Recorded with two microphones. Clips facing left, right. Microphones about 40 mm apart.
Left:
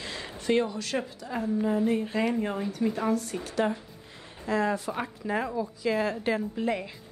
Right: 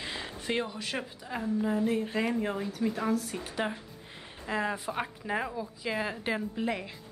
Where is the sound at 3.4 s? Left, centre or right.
Centre.